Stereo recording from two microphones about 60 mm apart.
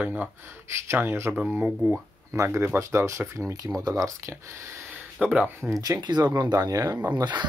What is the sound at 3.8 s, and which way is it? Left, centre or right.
Speech, right.